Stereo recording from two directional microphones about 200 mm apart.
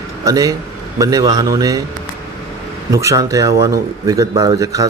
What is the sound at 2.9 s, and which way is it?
Speech, 15° right (ahead or behind).